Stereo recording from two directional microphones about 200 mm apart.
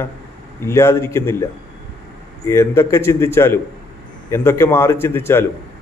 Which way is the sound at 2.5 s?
15° left (ahead or behind).